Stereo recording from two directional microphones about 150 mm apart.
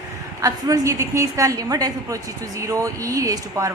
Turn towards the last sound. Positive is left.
turn(degrees=-20)  # may be behind; listen again after turning